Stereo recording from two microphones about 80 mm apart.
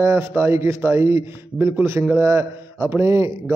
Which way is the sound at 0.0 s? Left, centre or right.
Right.